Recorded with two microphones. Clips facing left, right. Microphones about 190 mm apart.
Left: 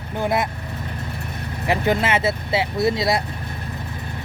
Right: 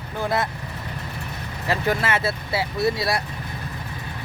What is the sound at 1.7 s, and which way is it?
Speech, 20° left (ahead or behind).